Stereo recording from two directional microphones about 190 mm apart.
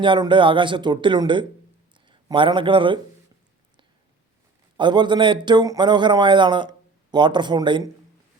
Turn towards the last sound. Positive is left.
turn(degrees=-20)  # may be behind; listen again after turning